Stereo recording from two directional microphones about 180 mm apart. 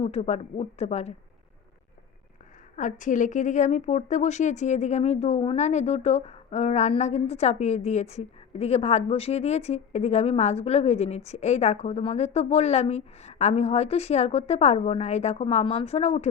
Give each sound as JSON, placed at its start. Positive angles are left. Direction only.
{"t": 0.0, "sound": "a woman's voice", "side_deg": 35}
{"t": 2.7, "sound": "a woman's voice", "side_deg": 45}